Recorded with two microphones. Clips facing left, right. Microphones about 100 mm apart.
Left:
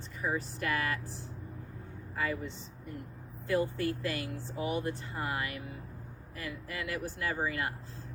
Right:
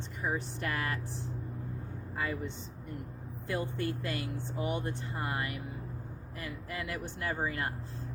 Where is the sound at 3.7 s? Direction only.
25° right (ahead or behind).